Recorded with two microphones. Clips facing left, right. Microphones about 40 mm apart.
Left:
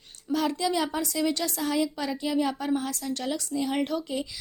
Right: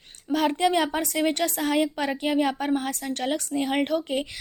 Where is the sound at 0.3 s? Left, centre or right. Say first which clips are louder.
Right 3 dB; right.